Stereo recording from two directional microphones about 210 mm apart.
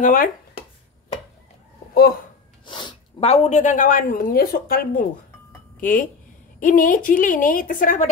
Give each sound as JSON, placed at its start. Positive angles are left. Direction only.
{"t": 0.0, "sound": "a woman's voice", "side_deg": 40}
{"t": 2.6, "sound": "a woman's voice", "side_deg": 25}